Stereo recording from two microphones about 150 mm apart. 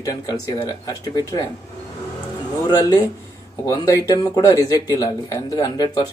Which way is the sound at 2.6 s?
25° left (ahead or behind).